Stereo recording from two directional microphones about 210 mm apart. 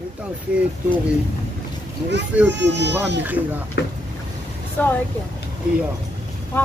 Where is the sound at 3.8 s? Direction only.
50° left (ahead or behind).